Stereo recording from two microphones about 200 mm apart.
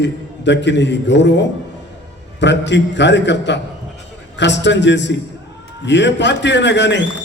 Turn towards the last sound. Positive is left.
turn(degrees=60)  # may be behind; listen again after turning